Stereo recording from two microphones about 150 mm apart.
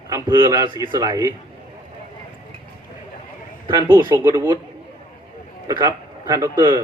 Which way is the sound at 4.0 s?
25° right (ahead or behind).